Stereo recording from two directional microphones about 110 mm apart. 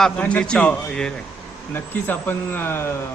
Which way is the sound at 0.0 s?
10° left (ahead or behind).